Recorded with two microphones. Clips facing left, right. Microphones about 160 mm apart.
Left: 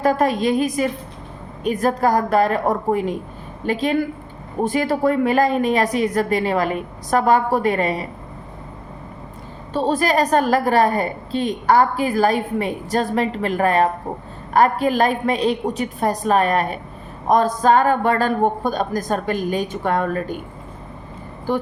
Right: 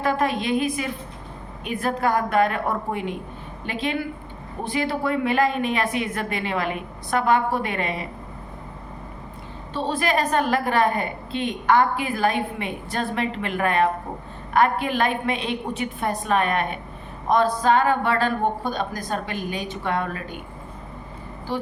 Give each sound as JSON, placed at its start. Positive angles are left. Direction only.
{"t": 0.0, "sound": "a woman's voice", "side_deg": 40}
{"t": 9.7, "sound": "a woman's voice", "side_deg": 40}
{"t": 21.5, "sound": "speech", "side_deg": 50}